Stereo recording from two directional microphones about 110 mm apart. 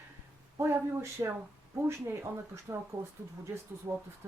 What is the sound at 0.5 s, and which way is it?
Speech, 25° right (ahead or behind).